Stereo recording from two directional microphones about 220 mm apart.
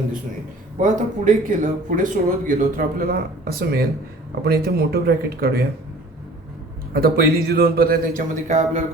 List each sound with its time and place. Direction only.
0.8 s speech: 35° right (ahead or behind)
6.9 s speech: 45° right (ahead or behind)